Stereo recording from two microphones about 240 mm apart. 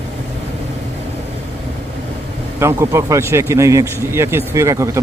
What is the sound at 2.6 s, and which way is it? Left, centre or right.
Speech, centre.